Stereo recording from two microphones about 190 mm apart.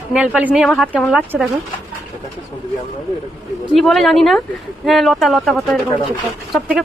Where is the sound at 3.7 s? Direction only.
Centre (ahead or behind).